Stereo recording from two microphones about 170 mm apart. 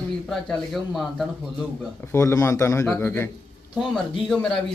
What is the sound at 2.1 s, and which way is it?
A man's voice, 15° left (ahead or behind).